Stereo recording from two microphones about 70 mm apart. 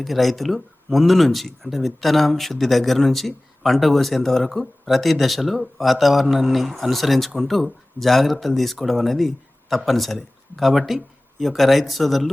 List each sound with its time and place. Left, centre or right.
0.0 s speech: centre